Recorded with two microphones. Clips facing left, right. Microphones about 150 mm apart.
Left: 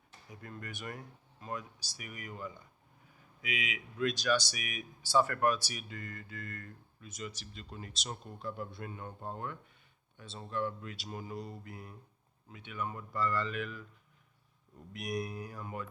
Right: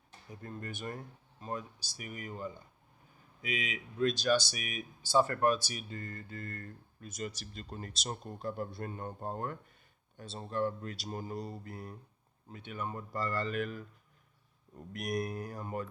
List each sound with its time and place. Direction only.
0.3 s speech: 30° right (ahead or behind)
14.9 s speech: 45° right (ahead or behind)